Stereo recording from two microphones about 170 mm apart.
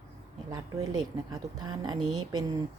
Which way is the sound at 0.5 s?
25° right (ahead or behind).